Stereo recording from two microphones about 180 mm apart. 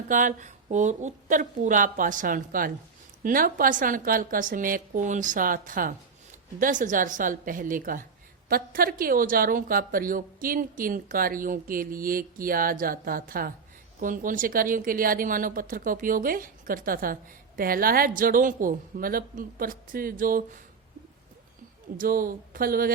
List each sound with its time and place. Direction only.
0.1 s a woman's voice: 45° right (ahead or behind)
21.9 s a woman's voice: 50° right (ahead or behind)